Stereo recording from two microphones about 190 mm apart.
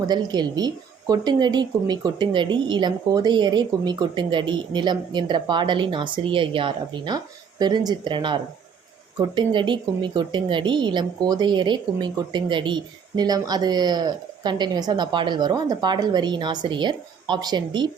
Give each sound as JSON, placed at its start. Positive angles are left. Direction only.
{"t": 0.1, "sound": "speech", "side_deg": -20}